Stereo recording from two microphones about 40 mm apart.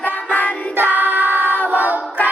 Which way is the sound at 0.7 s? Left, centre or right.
Right.